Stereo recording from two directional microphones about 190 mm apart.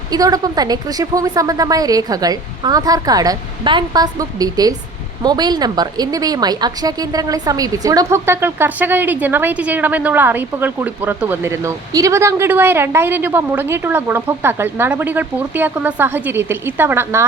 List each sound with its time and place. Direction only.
0.1 s a woman's voice: 20° right (ahead or behind)